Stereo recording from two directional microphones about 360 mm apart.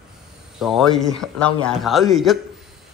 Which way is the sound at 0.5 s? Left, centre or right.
Centre.